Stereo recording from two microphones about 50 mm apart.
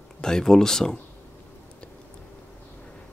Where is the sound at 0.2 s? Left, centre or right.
Centre.